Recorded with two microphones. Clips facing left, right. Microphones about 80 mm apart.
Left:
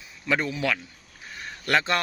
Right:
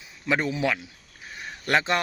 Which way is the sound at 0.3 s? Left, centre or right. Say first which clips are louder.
Right 1 dB; right.